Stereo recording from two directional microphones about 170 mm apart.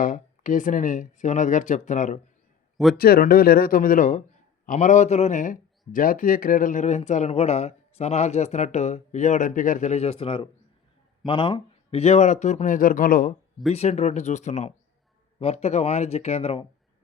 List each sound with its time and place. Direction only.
0.0 s speech: 50° left (ahead or behind)
3.0 s speech: 60° left (ahead or behind)
13.7 s speech: 40° left (ahead or behind)